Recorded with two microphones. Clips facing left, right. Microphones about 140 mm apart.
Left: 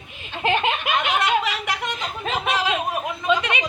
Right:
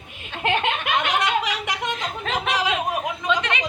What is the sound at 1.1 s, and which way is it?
Speech, 20° right (ahead or behind).